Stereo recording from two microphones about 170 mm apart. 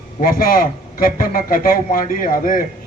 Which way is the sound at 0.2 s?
55° left (ahead or behind).